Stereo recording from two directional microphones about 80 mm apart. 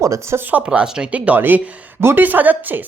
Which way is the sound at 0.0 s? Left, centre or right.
Right.